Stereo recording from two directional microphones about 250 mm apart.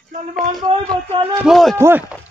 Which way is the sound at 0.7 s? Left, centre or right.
Right.